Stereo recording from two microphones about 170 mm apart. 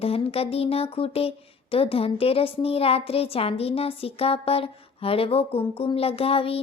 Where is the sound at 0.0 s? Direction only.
35° left (ahead or behind).